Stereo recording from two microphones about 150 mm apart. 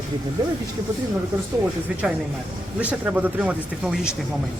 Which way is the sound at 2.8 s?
10° right (ahead or behind).